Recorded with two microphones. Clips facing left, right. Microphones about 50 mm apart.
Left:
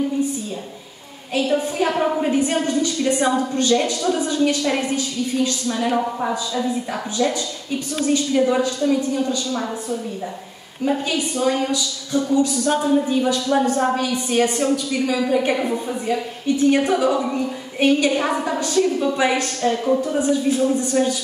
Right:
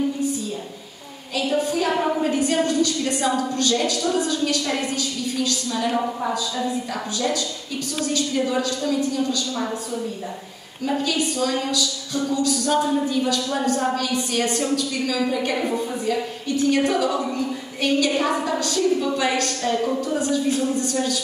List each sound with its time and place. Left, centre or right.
1.3 s a woman's voice: left
10.9 s a woman's voice: left
15.1 s a woman's voice: centre